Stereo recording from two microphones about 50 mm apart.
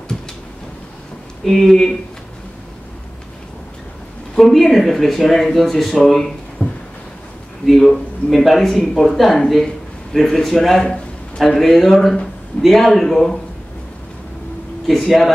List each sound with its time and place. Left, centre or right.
1.4 s speech: centre
4.4 s speech: centre
6.6 s a sound: left
7.6 s a man's voice: centre
14.9 s speech: centre